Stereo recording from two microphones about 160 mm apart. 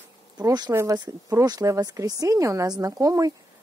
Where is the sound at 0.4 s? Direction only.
25° right (ahead or behind).